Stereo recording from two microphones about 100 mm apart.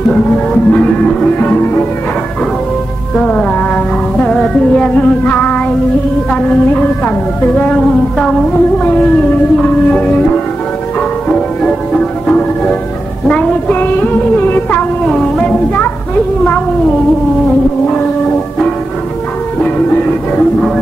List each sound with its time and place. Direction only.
0.7 s music: 10° left (ahead or behind)
3.2 s music: 10° left (ahead or behind)
15.0 s a sound: centre (ahead or behind)
19.6 s music: 15° left (ahead or behind)